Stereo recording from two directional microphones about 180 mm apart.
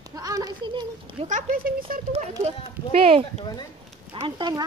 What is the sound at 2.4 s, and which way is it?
Speech, 30° right (ahead or behind).